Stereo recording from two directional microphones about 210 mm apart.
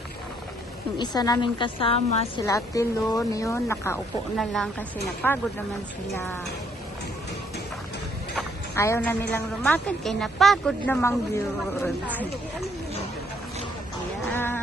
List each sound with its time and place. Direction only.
0.9 s a woman's voice: 20° left (ahead or behind)
2.4 s speech: 15° left (ahead or behind)
8.7 s a woman's voice: 15° left (ahead or behind)
14.3 s music: 10° left (ahead or behind)